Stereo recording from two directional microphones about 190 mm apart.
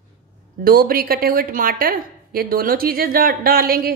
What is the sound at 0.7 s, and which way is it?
A woman's voice, 50° right (ahead or behind).